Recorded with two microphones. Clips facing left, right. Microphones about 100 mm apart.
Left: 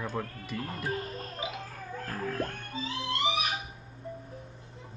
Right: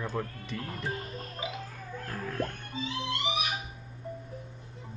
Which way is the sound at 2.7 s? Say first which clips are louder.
Left 1 dB; 35° left (ahead or behind).